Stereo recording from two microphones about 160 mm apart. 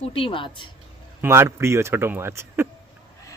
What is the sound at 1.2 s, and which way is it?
Speech, 15° right (ahead or behind).